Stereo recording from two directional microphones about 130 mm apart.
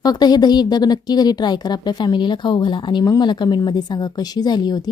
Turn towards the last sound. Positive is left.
turn(degrees=30)  # may be behind; listen again after turning